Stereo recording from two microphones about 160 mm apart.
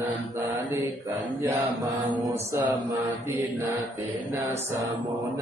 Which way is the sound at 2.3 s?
20° right (ahead or behind).